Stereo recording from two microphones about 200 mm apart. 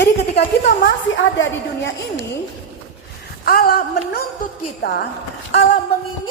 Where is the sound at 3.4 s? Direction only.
50° left (ahead or behind).